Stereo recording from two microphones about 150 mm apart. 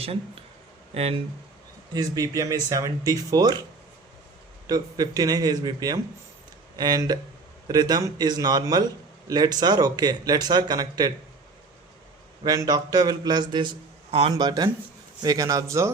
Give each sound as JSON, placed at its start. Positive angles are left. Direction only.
{"t": 0.9, "sound": "speech", "side_deg": -45}
{"t": 1.9, "sound": "speech", "side_deg": -25}
{"t": 4.6, "sound": "speech", "side_deg": -25}
{"t": 12.5, "sound": "speech", "side_deg": -25}
{"t": 14.1, "sound": "speech", "side_deg": -40}
{"t": 14.3, "sound": "speech", "side_deg": -30}